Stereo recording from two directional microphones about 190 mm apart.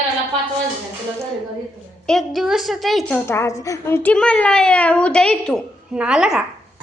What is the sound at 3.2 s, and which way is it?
A woman's voice, 15° left (ahead or behind).